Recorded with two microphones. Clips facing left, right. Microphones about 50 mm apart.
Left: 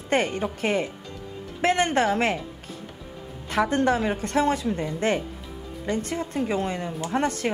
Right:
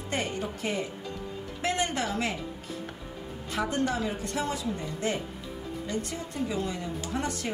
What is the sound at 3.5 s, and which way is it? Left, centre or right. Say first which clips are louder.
A woman's voice: left 7 dB; left.